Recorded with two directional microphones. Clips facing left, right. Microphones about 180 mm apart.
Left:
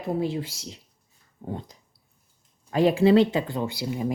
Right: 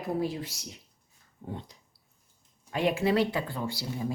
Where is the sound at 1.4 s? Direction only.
40° left (ahead or behind).